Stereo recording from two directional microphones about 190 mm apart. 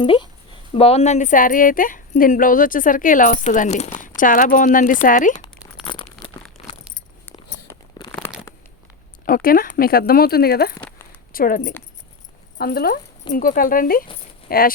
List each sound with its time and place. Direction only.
0.0 s speech: 25° left (ahead or behind); by 5.3 s 45° left (ahead or behind)
5.8 s tearing: 25° left (ahead or behind)
6.6 s keys jangling: 30° left (ahead or behind)
9.2 s speech: 50° left (ahead or behind)
10.8 s a sound: 10° left (ahead or behind)
11.3 s speech: 50° left (ahead or behind)